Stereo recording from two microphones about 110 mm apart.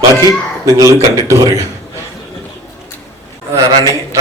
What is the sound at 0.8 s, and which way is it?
Speech, 30° right (ahead or behind).